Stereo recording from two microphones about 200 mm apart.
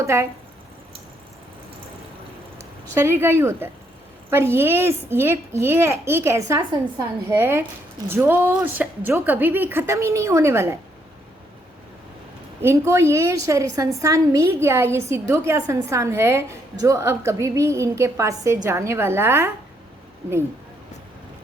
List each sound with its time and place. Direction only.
0.0 s a woman's voice: 15° right (ahead or behind)
2.9 s a woman's voice: 10° right (ahead or behind)
12.6 s a woman's voice: 15° right (ahead or behind)